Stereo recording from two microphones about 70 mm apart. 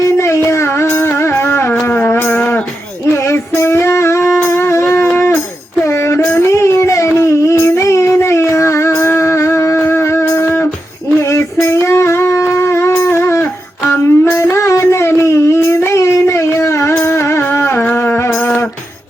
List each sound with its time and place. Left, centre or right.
0.0 s music: left
3.2 s music: left
11.6 s shofar: left
13.9 s a sound: left
17.0 s music: left